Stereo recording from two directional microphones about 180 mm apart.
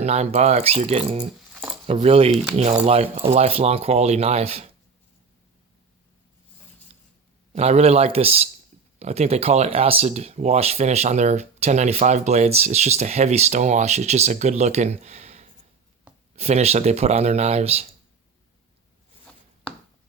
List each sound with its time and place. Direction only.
0.0 s speech: 35° right (ahead or behind)
1.4 s a sound: centre (ahead or behind)
1.9 s speech: 30° right (ahead or behind)
7.5 s speech: 35° right (ahead or behind)